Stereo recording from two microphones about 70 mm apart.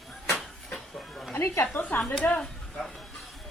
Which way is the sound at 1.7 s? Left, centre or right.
Left.